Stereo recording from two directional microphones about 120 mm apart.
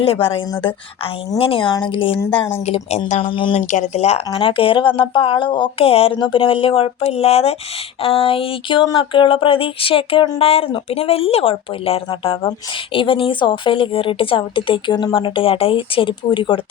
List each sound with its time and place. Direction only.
0.0 s a woman's voice: 50° left (ahead or behind)
2.6 s speech: 60° left (ahead or behind)
3.2 s a woman's voice: 45° left (ahead or behind)
3.5 s a woman's voice: 90° left; by 6.1 s 55° left (ahead or behind)
6.1 s a woman's voice: 45° left (ahead or behind)